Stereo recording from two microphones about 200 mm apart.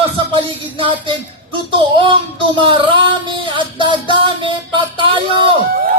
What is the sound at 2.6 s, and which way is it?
Music, 25° right (ahead or behind).